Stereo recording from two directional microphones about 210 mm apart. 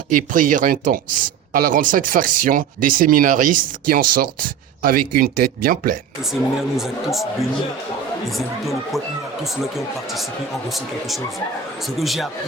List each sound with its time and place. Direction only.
0.1 s speech: 40° right (ahead or behind)
6.2 s speech: centre (ahead or behind)
8.3 s speech: centre (ahead or behind)
10.7 s speech: centre (ahead or behind)